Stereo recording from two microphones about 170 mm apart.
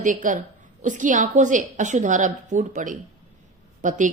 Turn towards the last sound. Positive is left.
turn(degrees=-45)  # may be behind; listen again after turning